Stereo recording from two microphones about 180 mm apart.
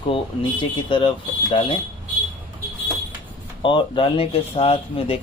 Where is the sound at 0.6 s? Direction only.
25° left (ahead or behind).